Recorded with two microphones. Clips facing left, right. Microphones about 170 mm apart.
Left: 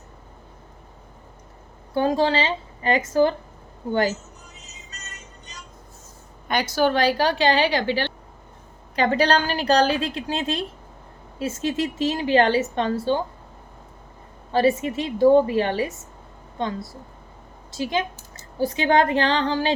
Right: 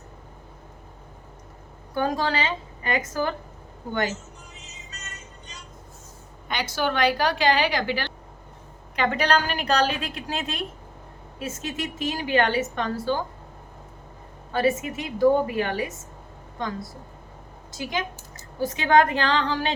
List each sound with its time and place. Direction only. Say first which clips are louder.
1.9 s a woman's voice: left 5 dB; 30° left (ahead or behind)
6.5 s a woman's voice: left 6 dB; 45° left (ahead or behind)
14.5 s a woman's voice: left 4 dB; 30° left (ahead or behind)